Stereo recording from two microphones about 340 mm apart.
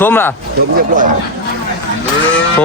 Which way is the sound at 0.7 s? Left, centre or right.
Right.